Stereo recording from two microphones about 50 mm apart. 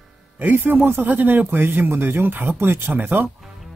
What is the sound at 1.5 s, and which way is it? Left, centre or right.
Speech, right.